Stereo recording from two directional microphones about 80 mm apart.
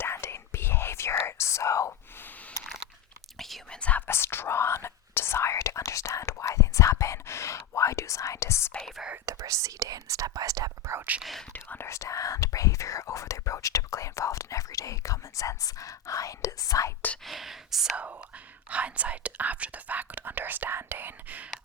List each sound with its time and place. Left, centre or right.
0.0 s whispering: left
3.3 s whispering: centre
3.8 s whispering: centre; by 8.7 s left
8.8 s whispering: centre
9.2 s whispering: right
10.9 s whispering: right
11.2 s whispering: centre
11.5 s whispering: left
11.9 s whispering: left
17.2 s whispering: centre
17.9 s whispering: centre